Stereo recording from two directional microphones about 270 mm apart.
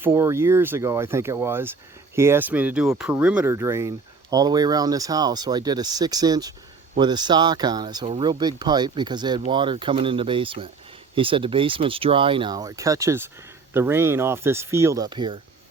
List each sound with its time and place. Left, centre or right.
0.0 s speech: centre